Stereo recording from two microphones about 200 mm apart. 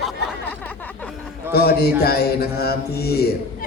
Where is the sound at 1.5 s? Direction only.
50° left (ahead or behind).